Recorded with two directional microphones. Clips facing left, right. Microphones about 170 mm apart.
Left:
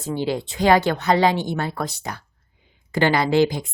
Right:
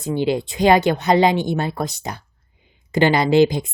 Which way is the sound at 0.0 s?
20° right (ahead or behind).